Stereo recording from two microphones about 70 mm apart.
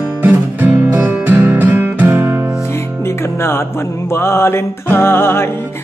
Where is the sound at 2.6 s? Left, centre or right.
Left.